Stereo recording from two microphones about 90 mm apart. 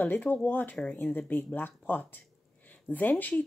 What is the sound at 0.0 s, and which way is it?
Speech, 20° left (ahead or behind).